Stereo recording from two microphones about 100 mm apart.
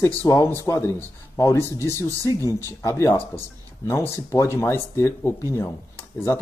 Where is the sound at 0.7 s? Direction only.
25° left (ahead or behind).